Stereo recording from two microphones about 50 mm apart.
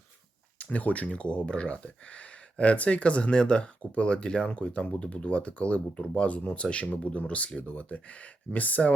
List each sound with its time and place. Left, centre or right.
0.6 s speech: left